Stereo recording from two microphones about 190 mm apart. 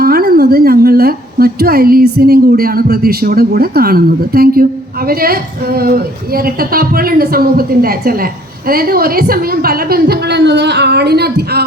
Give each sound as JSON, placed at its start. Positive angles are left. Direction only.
{"t": 0.0, "sound": "a woman's voice", "side_deg": -55}